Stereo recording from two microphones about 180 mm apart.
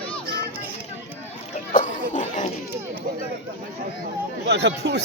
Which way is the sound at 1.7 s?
45° left (ahead or behind).